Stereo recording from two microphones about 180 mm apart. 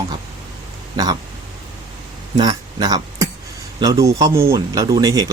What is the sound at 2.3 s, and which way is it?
Speech, 20° right (ahead or behind).